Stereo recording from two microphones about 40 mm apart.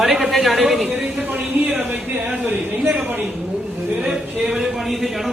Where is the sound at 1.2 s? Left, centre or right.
Right.